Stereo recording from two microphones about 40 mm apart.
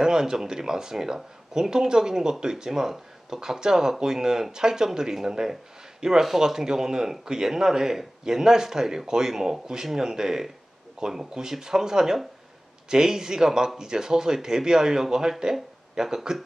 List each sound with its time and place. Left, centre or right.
0.0 s speech: centre